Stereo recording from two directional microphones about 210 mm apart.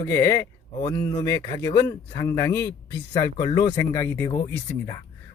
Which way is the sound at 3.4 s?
20° left (ahead or behind).